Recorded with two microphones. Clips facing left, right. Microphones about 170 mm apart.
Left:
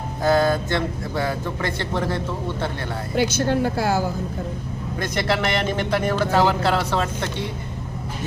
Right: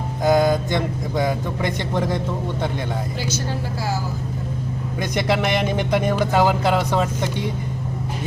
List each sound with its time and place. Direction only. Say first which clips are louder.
0.2 s speech: right 2 dB; 15° right (ahead or behind)
3.2 s a woman's voice: left 6 dB; 60° left (ahead or behind)
4.9 s speech: right 2 dB; 15° right (ahead or behind)